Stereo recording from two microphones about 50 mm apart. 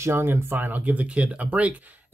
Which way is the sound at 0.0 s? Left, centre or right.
Right.